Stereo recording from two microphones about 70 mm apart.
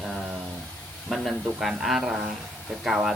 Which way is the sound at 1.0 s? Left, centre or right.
Centre.